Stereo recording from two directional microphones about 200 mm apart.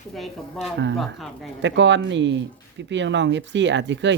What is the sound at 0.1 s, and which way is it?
Speech, centre (ahead or behind).